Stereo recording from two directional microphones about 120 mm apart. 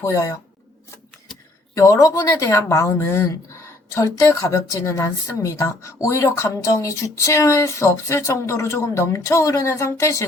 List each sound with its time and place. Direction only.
0.0 s speech: 25° left (ahead or behind)
1.7 s speech: 25° left (ahead or behind)